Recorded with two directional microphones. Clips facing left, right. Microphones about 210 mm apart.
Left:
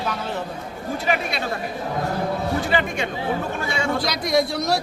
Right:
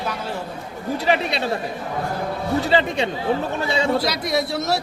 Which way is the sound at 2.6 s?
30° right (ahead or behind).